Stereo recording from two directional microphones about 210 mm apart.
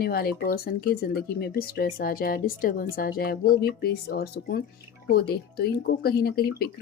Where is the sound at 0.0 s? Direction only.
45° left (ahead or behind).